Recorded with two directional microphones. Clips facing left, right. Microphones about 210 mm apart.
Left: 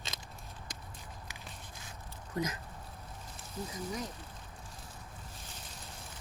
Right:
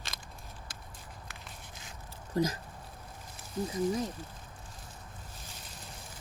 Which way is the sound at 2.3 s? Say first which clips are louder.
Right 6 dB; 35° right (ahead or behind).